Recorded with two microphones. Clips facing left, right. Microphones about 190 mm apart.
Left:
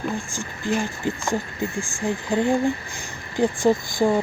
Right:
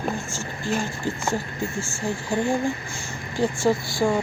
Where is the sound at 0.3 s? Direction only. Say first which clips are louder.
Left 2 dB; 15° left (ahead or behind).